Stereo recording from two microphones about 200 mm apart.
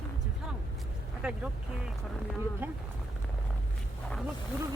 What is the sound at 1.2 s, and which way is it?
Speech, 5° right (ahead or behind).